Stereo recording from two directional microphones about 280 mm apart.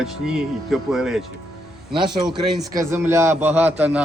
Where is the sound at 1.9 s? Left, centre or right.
Centre.